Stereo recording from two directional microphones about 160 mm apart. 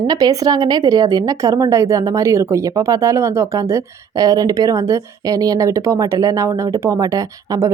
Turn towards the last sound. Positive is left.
turn(degrees=-20)  # may be behind; listen again after turning